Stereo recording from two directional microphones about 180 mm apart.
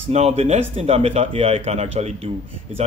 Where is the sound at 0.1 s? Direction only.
35° right (ahead or behind).